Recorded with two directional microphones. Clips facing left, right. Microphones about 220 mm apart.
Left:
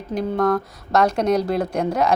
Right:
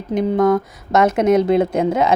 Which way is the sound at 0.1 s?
20° right (ahead or behind).